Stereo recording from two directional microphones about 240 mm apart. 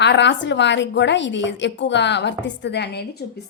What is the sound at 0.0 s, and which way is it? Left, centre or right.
A woman's voice, left.